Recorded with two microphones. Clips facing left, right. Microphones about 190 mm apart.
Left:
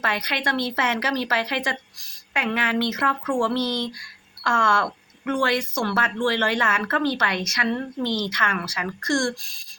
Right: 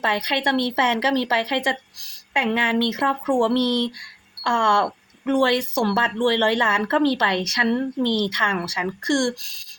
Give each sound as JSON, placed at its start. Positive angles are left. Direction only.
{"t": 0.0, "sound": "a woman's voice", "side_deg": -25}